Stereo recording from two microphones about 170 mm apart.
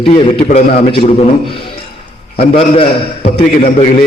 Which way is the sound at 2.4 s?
35° left (ahead or behind).